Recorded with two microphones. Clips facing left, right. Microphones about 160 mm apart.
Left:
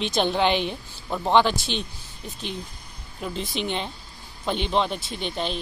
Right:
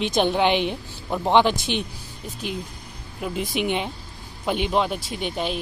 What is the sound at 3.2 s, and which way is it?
Speech, 10° right (ahead or behind).